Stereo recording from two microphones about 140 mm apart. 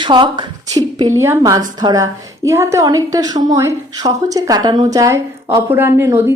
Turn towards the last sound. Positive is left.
turn(degrees=-15)  # may be behind; listen again after turning